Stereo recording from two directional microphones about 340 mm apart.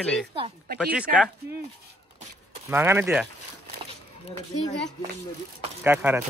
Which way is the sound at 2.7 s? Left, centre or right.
Centre.